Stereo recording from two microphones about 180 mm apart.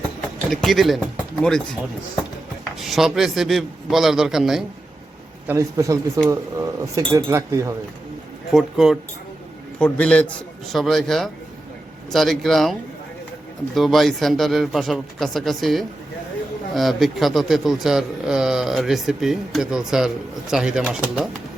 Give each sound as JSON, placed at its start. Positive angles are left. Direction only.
{"t": 0.5, "sound": "speech", "side_deg": 0}
{"t": 2.8, "sound": "speech", "side_deg": 0}
{"t": 5.5, "sound": "speech", "side_deg": -15}
{"t": 8.5, "sound": "speech", "side_deg": 0}
{"t": 13.7, "sound": "speech", "side_deg": 0}